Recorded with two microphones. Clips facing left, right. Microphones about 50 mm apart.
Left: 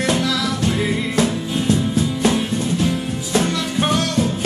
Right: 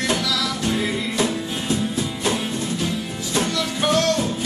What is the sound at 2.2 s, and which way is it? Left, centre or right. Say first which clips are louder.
Music: left 3 dB; left.